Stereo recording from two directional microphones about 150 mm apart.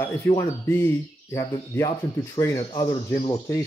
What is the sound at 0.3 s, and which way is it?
Speech, 15° left (ahead or behind).